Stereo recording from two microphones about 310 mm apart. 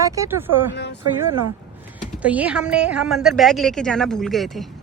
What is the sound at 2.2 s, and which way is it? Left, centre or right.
A woman's voice, centre.